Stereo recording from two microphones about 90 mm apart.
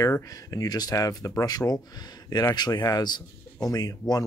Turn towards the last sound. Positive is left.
turn(degrees=45)  # may be behind; listen again after turning